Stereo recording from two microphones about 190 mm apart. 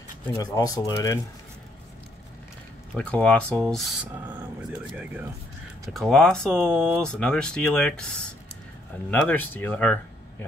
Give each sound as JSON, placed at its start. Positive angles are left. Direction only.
{"t": 0.4, "sound": "speech", "side_deg": 20}
{"t": 3.0, "sound": "speech", "side_deg": 5}
{"t": 5.9, "sound": "speech", "side_deg": 0}